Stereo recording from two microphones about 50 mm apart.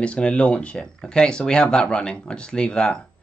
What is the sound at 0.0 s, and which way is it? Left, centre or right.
Speech, left.